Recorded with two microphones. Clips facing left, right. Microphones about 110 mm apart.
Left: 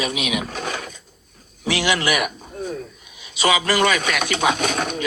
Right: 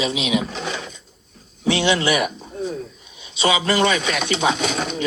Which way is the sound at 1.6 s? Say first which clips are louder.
Right 2 dB; 25° right (ahead or behind).